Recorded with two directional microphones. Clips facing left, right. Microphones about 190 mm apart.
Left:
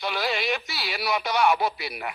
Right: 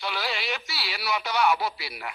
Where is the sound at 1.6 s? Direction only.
55° left (ahead or behind).